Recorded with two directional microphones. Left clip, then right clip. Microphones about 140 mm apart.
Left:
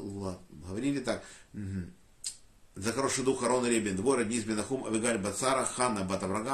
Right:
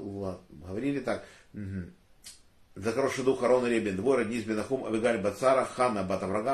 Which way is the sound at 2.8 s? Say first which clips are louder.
Right 3 dB; 20° left (ahead or behind).